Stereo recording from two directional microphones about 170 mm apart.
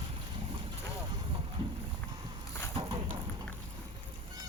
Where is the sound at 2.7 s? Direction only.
25° right (ahead or behind).